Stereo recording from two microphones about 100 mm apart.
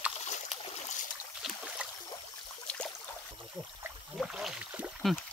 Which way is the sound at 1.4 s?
10° right (ahead or behind).